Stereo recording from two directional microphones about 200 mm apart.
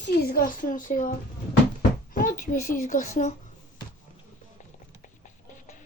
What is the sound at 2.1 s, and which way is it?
Speech, 40° left (ahead or behind).